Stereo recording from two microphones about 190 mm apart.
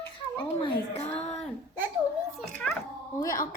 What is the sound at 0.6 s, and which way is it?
Speech, 30° left (ahead or behind).